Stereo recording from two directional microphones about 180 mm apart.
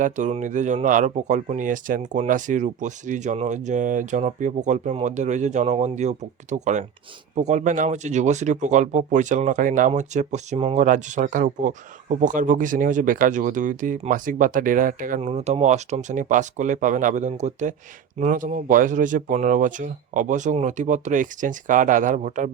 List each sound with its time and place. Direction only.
0.0 s speech: 40° right (ahead or behind)
10.8 s speech: 45° right (ahead or behind)
15.3 s speech: 35° right (ahead or behind)